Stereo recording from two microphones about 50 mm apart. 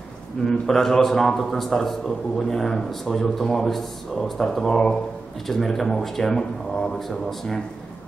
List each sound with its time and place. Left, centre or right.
0.5 s a man's voice: centre